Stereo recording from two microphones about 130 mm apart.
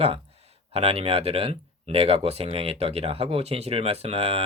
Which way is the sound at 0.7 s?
50° right (ahead or behind).